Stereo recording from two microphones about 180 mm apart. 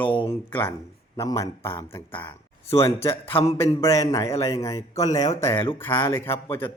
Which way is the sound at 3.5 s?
15° left (ahead or behind).